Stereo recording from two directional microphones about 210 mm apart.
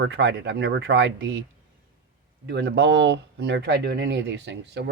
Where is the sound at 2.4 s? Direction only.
55° right (ahead or behind).